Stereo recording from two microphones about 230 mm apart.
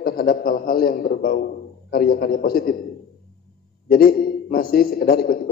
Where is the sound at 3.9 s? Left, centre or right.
Left.